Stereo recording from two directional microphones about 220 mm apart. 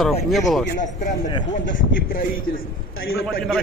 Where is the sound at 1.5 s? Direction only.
40° left (ahead or behind).